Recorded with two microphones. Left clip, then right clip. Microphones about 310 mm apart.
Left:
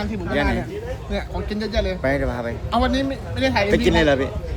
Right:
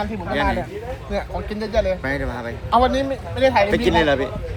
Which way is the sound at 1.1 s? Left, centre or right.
Centre.